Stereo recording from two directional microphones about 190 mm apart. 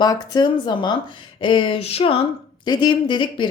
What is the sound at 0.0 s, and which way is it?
A woman's voice, 20° left (ahead or behind).